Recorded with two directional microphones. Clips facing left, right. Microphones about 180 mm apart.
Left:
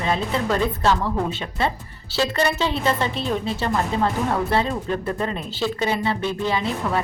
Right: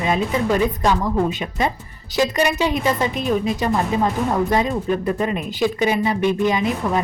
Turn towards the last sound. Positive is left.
turn(degrees=-15)  # may be behind; listen again after turning